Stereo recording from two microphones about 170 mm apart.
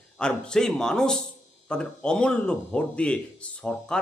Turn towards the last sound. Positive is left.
turn(degrees=5)  # may be behind; listen again after turning